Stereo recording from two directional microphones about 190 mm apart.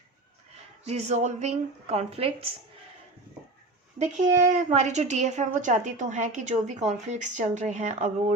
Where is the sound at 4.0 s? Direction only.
40° right (ahead or behind).